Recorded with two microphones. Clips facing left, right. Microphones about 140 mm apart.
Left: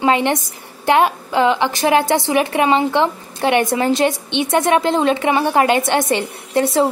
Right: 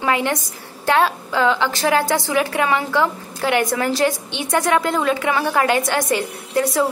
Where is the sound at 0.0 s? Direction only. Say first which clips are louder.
Left 4 dB; 20° left (ahead or behind).